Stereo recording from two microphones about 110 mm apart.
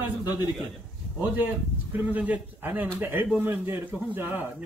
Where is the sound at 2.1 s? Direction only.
15° right (ahead or behind).